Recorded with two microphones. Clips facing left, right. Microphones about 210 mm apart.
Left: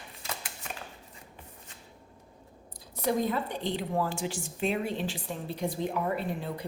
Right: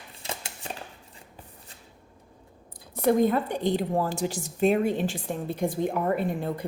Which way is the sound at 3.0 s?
55° right (ahead or behind).